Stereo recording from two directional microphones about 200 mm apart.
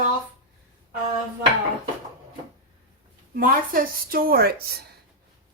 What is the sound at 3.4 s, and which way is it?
Speech, 45° right (ahead or behind).